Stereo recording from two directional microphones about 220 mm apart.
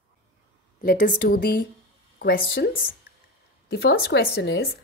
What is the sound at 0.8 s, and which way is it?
A woman's voice, 40° left (ahead or behind).